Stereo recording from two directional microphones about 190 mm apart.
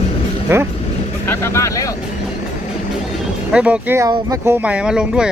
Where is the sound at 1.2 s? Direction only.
15° left (ahead or behind).